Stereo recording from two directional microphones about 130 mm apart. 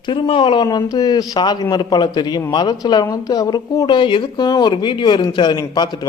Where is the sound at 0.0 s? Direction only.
40° left (ahead or behind).